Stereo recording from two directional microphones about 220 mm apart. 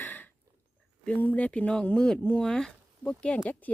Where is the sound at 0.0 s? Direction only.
10° left (ahead or behind).